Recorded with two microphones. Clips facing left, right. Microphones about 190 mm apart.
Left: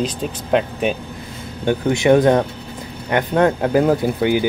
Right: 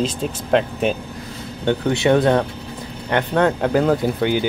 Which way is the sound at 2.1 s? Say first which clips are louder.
Left 3 dB; 15° left (ahead or behind).